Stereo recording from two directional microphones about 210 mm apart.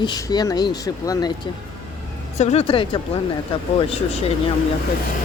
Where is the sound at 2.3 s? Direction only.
30° left (ahead or behind).